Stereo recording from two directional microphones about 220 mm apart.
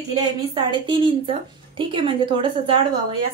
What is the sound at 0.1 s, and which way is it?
A woman's voice, 20° right (ahead or behind).